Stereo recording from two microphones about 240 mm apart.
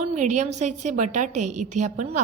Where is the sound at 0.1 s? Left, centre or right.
Right.